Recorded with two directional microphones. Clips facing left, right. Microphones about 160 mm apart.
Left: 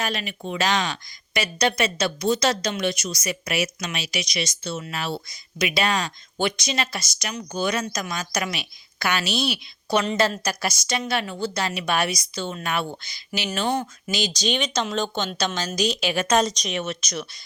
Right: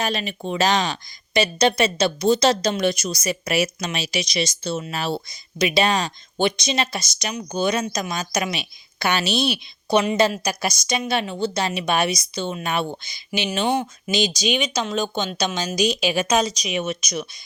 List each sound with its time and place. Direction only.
0.0 s a woman's voice: 30° right (ahead or behind); by 17.2 s 15° right (ahead or behind)